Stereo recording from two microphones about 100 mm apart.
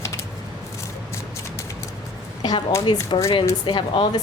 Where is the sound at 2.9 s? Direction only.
55° left (ahead or behind).